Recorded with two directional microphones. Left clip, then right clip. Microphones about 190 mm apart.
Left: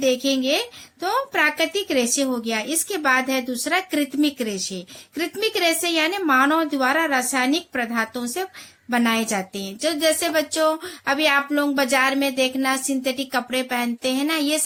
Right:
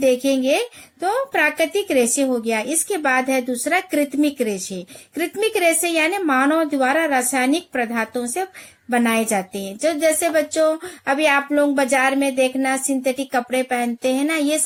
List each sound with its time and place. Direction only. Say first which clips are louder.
0.0 s speech: right 3 dB; 25° right (ahead or behind)